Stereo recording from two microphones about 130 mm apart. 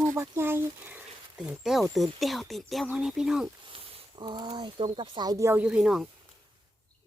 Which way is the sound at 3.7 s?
45° right (ahead or behind).